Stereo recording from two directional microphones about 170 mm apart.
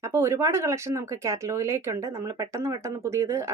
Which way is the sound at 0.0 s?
15° right (ahead or behind).